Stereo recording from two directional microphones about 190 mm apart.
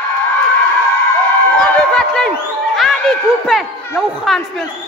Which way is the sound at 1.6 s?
5° left (ahead or behind).